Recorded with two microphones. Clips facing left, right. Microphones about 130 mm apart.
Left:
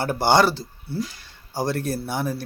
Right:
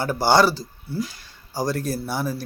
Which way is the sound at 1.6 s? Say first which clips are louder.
Even; 60° left (ahead or behind).